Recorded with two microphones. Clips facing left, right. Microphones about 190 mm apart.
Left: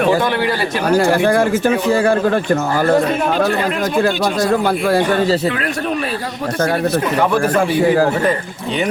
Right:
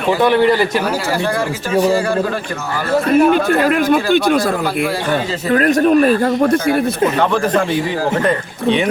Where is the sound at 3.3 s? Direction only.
55° right (ahead or behind).